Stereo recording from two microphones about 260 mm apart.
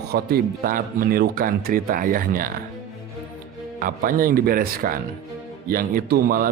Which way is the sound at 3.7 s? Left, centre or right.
Right.